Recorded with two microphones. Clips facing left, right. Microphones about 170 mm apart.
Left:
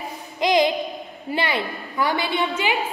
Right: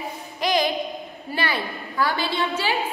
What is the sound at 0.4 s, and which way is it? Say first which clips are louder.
Music: left 4 dB; 20° left (ahead or behind).